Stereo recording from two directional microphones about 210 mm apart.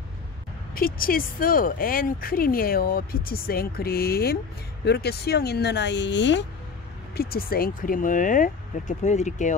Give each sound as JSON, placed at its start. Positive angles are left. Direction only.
{"t": 0.7, "sound": "speech", "side_deg": 45}
{"t": 7.2, "sound": "speech", "side_deg": 45}